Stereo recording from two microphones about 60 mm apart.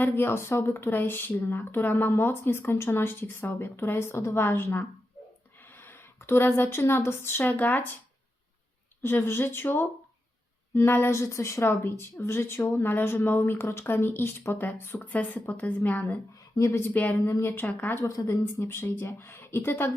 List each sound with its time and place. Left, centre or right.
0.0 s speech: left
4.4 s a woman's voice: left
9.0 s speech: left
11.1 s speech: left
16.6 s speech: left
16.9 s speech: left
18.1 s a woman's voice: left
18.6 s speech: left